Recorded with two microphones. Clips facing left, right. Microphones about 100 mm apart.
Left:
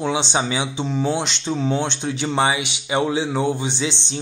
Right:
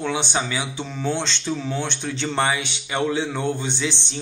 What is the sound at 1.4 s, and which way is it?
Speech, 25° left (ahead or behind).